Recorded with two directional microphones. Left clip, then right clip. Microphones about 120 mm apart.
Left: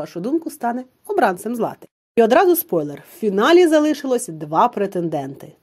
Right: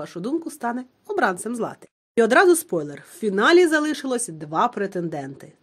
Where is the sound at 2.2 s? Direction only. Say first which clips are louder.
Left 2 dB; 15° left (ahead or behind).